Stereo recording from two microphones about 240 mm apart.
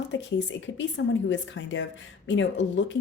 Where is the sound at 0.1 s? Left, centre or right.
Left.